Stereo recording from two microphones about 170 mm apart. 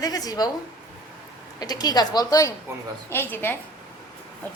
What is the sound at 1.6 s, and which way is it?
A woman's voice, 20° left (ahead or behind).